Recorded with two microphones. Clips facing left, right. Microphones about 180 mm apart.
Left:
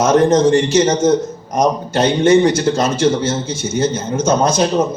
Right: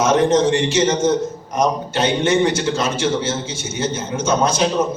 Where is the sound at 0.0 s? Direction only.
40° left (ahead or behind).